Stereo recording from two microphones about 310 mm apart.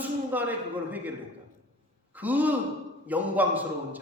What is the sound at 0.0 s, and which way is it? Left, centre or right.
A man's voice, centre.